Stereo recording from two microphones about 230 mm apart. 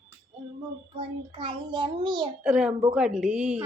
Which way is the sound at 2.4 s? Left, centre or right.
Centre.